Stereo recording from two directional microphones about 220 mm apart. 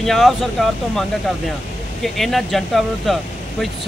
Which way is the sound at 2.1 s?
Centre (ahead or behind).